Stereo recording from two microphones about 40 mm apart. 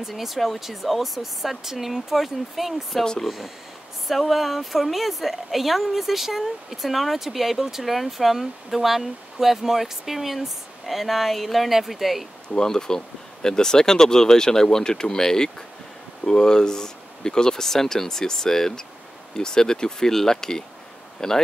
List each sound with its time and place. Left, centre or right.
0.1 s a woman's voice: centre
3.0 s speech: centre
3.3 s a woman's voice: centre
12.5 s speech: centre